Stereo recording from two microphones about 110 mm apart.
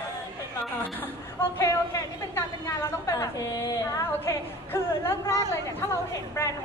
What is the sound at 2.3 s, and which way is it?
A woman's voice, 25° left (ahead or behind).